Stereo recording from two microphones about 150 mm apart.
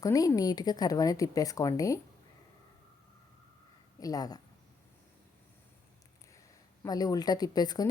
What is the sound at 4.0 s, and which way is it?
Speech, 25° left (ahead or behind).